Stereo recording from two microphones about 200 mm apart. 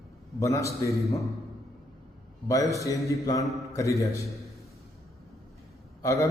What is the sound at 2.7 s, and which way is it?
Speech, 15° left (ahead or behind).